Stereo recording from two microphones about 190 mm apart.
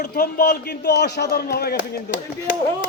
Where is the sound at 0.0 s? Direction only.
55° left (ahead or behind).